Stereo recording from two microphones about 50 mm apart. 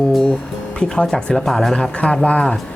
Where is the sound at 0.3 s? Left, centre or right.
Left.